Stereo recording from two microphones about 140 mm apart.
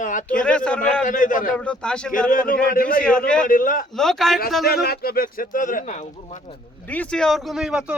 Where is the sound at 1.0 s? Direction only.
75° left (ahead or behind).